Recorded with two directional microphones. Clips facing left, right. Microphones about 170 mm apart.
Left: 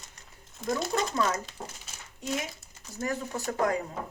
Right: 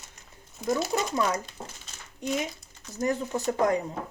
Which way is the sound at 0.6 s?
5° right (ahead or behind).